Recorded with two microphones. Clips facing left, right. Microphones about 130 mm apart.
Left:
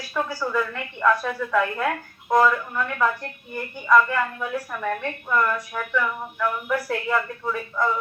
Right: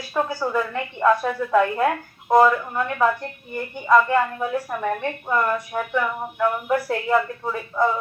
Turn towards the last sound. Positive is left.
turn(degrees=-30)  # may be behind; listen again after turning